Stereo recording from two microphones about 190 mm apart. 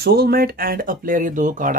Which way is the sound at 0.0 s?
55° right (ahead or behind).